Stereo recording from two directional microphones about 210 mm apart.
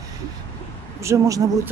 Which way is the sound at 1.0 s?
15° right (ahead or behind).